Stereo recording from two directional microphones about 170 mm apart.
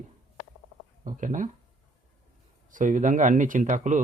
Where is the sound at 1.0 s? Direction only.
50° right (ahead or behind).